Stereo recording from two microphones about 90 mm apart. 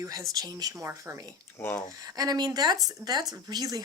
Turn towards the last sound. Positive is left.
turn(degrees=-45)  # may be behind; listen again after turning